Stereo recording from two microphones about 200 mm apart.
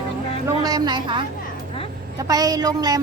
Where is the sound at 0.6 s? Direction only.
20° right (ahead or behind).